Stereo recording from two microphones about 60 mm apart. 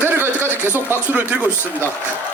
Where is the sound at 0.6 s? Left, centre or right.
Right.